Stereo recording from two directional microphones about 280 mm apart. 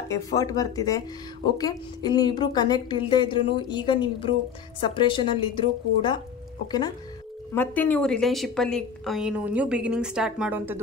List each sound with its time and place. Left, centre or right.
0.1 s a woman's voice: centre
7.5 s a woman's voice: centre